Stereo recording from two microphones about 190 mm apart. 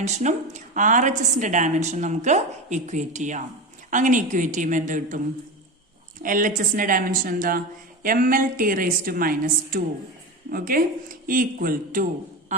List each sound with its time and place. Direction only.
0.0 s a woman's voice: 40° right (ahead or behind)
6.2 s a woman's voice: 45° right (ahead or behind)
12.5 s a sound: 40° right (ahead or behind)